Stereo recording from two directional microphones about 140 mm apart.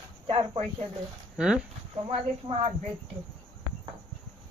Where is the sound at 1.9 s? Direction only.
45° right (ahead or behind).